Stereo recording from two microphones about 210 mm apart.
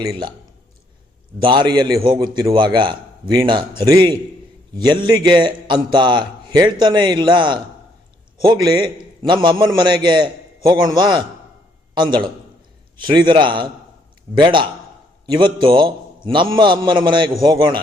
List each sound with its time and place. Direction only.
0.0 s a man's voice: 20° right (ahead or behind)
1.4 s a man's voice: 20° right (ahead or behind)